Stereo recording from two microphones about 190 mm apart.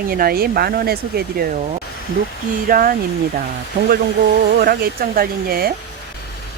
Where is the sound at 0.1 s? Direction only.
50° right (ahead or behind).